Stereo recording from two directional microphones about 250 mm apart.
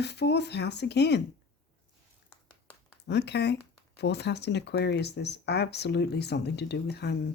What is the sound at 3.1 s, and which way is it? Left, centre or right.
Speech, left.